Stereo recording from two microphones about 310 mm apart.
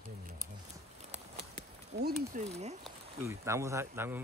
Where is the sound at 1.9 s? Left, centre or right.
Right.